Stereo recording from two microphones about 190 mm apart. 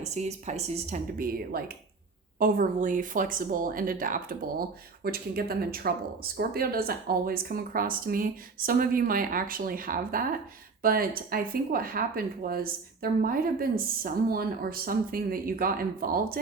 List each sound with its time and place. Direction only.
0.0 s speech: 35° right (ahead or behind)